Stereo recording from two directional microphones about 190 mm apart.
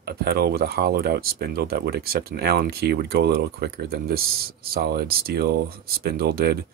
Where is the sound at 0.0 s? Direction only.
55° right (ahead or behind).